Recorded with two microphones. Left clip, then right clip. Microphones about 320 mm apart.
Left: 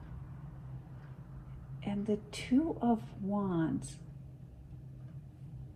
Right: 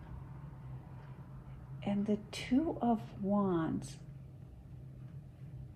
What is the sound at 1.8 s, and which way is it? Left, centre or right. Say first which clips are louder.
A woman's voice: left 1 dB; right.